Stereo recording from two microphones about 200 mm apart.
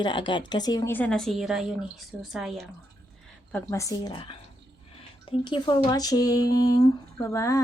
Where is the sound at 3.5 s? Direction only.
10° left (ahead or behind).